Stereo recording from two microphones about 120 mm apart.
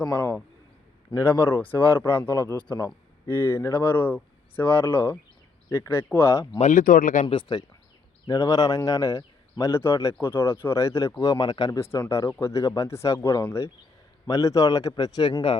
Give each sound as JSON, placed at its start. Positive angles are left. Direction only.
{"t": 0.1, "sound": "a man's voice", "side_deg": 20}
{"t": 6.6, "sound": "speech", "side_deg": 85}
{"t": 8.3, "sound": "a man's voice", "side_deg": 30}
{"t": 11.8, "sound": "a man's voice", "side_deg": 25}
{"t": 15.3, "sound": "speech", "side_deg": 45}